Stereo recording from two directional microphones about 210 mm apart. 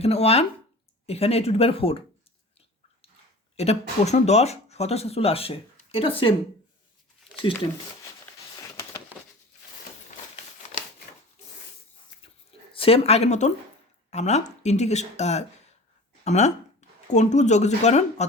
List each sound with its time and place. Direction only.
0.0 s speech: 30° left (ahead or behind)
3.6 s speech: 30° left (ahead or behind)
8.7 s a sound: 10° left (ahead or behind)
12.7 s a woman's voice: 25° left (ahead or behind)